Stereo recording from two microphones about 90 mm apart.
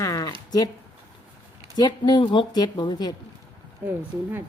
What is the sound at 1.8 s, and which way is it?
A woman's voice, 55° left (ahead or behind).